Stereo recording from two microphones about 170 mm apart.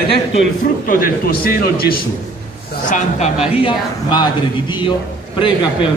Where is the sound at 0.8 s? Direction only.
60° left (ahead or behind).